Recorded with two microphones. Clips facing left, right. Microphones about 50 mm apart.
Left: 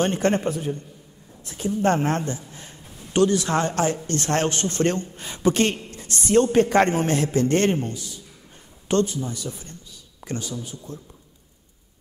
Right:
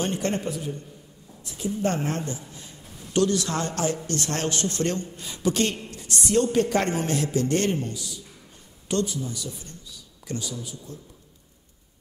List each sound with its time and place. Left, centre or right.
0.0 s a man's voice: left